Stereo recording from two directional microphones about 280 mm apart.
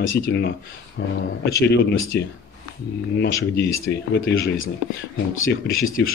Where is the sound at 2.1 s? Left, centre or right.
Left.